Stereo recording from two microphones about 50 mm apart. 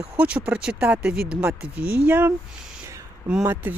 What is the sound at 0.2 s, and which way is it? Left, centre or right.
Speech, right.